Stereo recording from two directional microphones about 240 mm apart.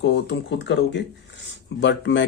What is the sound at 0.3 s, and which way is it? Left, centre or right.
Speech, left.